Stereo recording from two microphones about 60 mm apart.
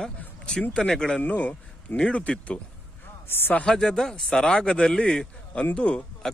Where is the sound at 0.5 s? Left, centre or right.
Centre.